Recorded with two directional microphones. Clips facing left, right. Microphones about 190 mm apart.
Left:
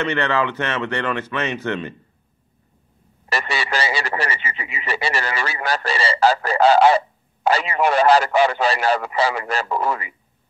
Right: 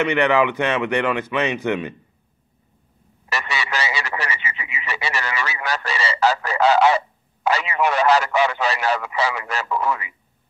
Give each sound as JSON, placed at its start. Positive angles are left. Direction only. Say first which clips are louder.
{"t": 0.0, "sound": "speech", "louder": "right 3 dB", "side_deg": -15}
{"t": 3.3, "sound": "speech", "louder": "left 2 dB", "side_deg": 30}